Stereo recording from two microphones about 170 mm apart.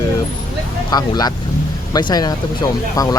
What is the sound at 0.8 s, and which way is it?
Speech, 25° left (ahead or behind).